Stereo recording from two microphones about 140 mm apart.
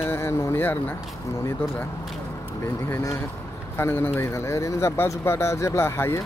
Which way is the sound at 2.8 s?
20° left (ahead or behind).